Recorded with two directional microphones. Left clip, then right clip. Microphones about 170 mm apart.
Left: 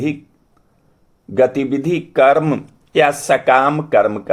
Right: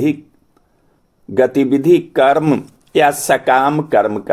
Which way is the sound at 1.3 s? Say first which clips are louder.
Right 1 dB; 30° right (ahead or behind).